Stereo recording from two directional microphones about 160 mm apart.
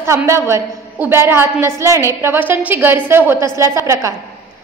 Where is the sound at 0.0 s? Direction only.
15° right (ahead or behind).